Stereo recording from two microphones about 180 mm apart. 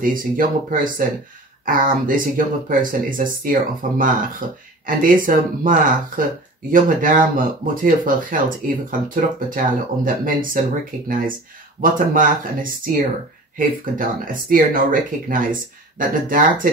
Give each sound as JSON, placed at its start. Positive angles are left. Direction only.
{"t": 0.0, "sound": "speech", "side_deg": -50}
{"t": 13.6, "sound": "speech", "side_deg": -50}